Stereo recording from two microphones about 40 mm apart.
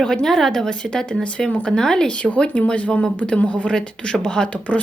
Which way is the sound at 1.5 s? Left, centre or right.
Left.